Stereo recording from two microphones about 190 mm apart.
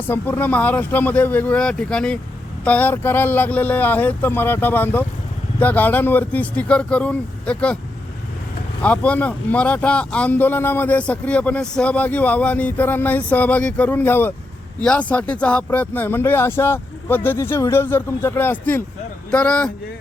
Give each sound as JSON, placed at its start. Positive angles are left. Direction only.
{"t": 0.1, "sound": "speech", "side_deg": 10}
{"t": 8.8, "sound": "speech", "side_deg": 5}